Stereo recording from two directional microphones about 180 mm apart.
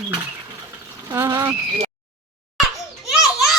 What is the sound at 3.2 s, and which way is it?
Children playing, centre (ahead or behind).